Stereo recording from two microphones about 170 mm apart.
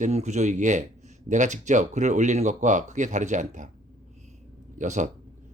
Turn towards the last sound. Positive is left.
turn(degrees=-45)  # may be behind; listen again after turning